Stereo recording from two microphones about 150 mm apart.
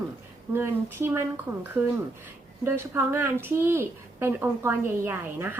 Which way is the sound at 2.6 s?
15° right (ahead or behind).